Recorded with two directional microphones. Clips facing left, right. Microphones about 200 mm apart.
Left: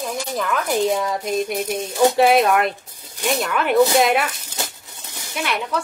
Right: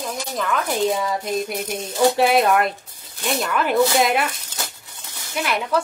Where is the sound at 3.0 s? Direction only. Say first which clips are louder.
Left 3 dB; 15° left (ahead or behind).